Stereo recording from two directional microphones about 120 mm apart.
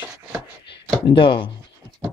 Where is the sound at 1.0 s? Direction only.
40° left (ahead or behind).